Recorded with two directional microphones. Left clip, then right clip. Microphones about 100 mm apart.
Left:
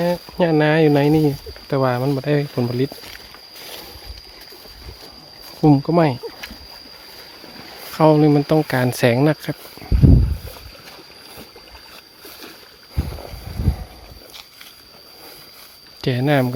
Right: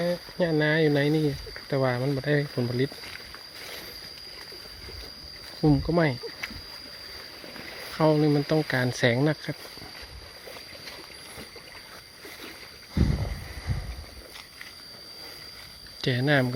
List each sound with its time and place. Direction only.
0.0 s speech: 60° left (ahead or behind); by 2.9 s 40° left (ahead or behind)
5.5 s speech: 50° left (ahead or behind)
5.9 s speech: 40° left (ahead or behind)
7.9 s speech: 65° left (ahead or behind)
8.5 s speech: 50° left (ahead or behind)
16.0 s speech: 35° left (ahead or behind)